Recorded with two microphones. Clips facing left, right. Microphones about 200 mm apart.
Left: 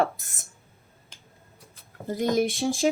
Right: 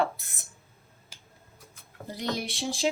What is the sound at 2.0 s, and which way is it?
Speech, 50° left (ahead or behind).